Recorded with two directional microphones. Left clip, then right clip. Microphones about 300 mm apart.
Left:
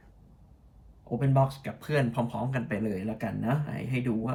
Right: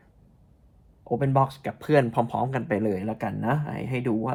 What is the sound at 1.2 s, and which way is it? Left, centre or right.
Speech, right.